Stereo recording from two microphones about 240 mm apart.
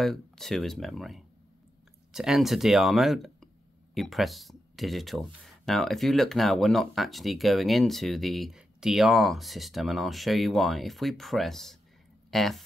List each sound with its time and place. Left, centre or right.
0.0 s speech: centre